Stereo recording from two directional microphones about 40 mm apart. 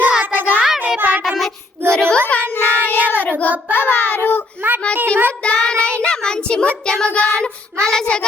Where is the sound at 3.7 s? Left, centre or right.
Left.